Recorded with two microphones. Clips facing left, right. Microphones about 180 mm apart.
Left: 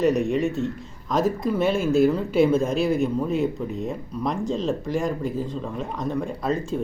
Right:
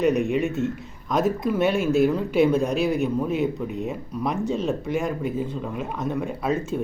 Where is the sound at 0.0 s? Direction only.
Centre (ahead or behind).